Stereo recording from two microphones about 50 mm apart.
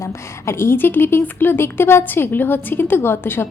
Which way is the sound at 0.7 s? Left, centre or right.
Left.